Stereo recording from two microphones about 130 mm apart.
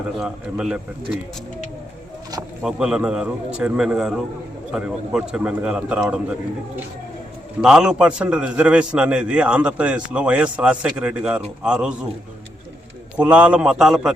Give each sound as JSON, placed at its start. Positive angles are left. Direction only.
{"t": 0.2, "sound": "a man's voice", "side_deg": -5}
{"t": 2.3, "sound": "speech", "side_deg": -30}
{"t": 2.6, "sound": "a man's voice", "side_deg": -5}
{"t": 7.6, "sound": "a man's voice", "side_deg": -5}
{"t": 13.1, "sound": "a man's voice", "side_deg": -10}